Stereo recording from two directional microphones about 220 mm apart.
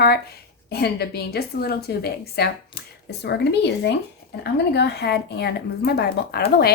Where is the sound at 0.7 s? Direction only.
45° left (ahead or behind).